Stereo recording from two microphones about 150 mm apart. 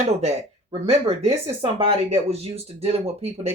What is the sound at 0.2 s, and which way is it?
Speech, 45° right (ahead or behind).